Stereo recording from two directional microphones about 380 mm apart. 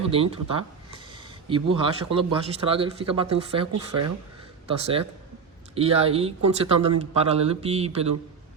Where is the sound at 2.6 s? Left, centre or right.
Centre.